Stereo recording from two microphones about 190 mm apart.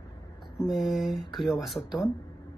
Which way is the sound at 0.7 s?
Centre (ahead or behind).